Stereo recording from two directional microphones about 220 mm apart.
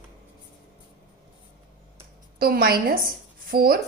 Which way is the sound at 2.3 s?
45° right (ahead or behind).